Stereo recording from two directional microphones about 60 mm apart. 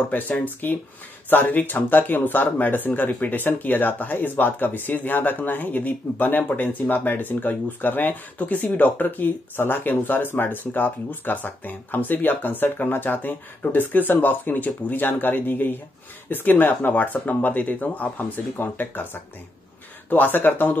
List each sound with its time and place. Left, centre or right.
0.1 s speech: left
20.1 s speech: left